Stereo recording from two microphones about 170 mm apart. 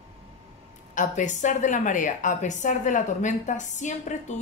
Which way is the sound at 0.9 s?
45° left (ahead or behind).